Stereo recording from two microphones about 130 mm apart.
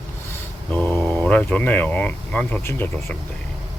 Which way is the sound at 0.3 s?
15° left (ahead or behind).